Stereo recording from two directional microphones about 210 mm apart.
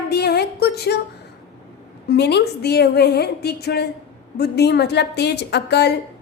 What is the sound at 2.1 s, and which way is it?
A woman's voice, 50° left (ahead or behind).